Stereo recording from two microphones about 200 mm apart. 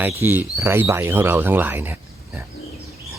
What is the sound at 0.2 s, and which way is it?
Speech, 10° right (ahead or behind).